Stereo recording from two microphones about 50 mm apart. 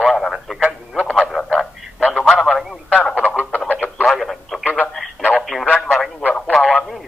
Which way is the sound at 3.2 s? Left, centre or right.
Left.